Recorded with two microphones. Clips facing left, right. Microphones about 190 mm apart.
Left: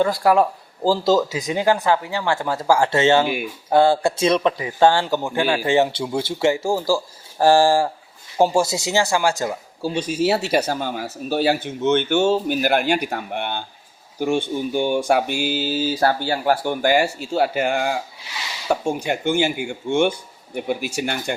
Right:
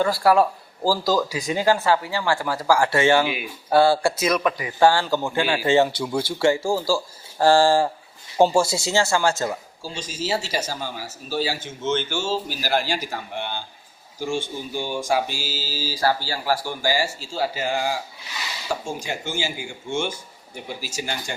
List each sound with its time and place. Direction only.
0.0 s speech: 15° left (ahead or behind)
3.2 s speech: 50° left (ahead or behind)
3.7 s speech: 20° left (ahead or behind)
9.8 s speech: 60° left (ahead or behind)